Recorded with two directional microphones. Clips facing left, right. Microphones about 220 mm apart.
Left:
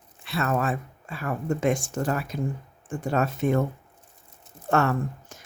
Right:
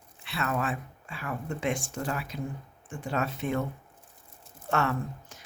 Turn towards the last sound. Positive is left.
turn(degrees=45)  # may be behind; listen again after turning